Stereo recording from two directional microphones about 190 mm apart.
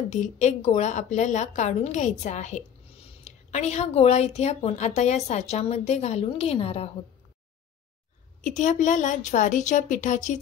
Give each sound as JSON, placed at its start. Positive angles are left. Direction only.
{"t": 0.1, "sound": "a woman's voice", "side_deg": 35}
{"t": 8.5, "sound": "a woman's voice", "side_deg": 40}